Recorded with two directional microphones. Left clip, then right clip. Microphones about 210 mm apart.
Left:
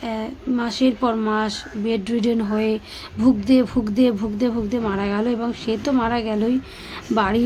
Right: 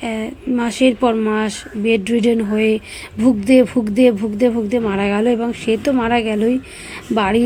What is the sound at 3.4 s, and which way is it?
A woman's voice, 15° right (ahead or behind).